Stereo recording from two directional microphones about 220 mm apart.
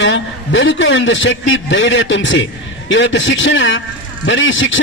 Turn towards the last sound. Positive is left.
turn(degrees=60)  # may be behind; listen again after turning